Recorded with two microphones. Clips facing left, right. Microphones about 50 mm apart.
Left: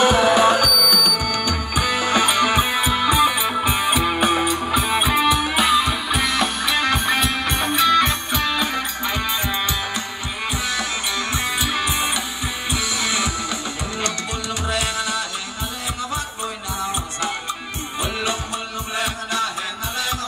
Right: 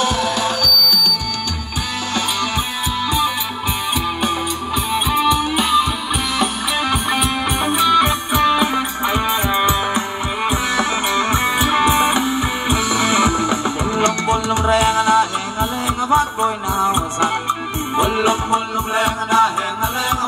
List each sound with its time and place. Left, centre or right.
0.0 s music: left
3.9 s music: centre; by 9.8 s right
10.8 s music: right